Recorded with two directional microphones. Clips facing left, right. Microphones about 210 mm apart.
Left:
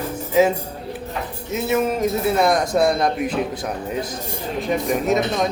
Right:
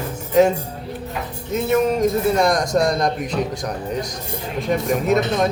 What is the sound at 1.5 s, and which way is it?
Speech, 5° left (ahead or behind).